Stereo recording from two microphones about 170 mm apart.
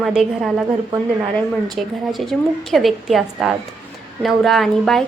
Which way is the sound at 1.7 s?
Centre (ahead or behind).